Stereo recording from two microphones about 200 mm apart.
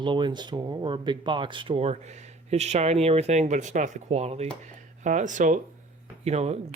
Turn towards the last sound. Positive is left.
turn(degrees=-35)  # may be behind; listen again after turning